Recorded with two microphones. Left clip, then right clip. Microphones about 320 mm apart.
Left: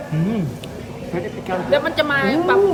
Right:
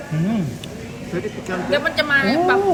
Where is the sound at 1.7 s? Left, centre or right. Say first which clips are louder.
Even; centre.